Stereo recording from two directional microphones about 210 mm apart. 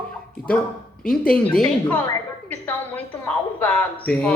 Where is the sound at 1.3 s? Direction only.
5° left (ahead or behind).